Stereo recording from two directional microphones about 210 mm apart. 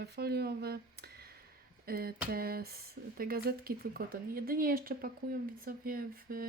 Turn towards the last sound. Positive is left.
turn(degrees=-45)  # may be behind; listen again after turning